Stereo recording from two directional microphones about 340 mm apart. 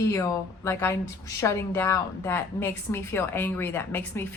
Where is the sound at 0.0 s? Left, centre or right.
Centre.